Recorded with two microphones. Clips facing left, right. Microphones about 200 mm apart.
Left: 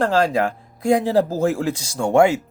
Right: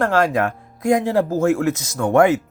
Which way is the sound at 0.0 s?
30° left (ahead or behind).